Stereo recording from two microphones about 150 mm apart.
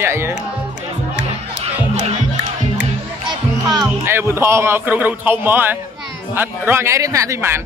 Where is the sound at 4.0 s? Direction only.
15° right (ahead or behind).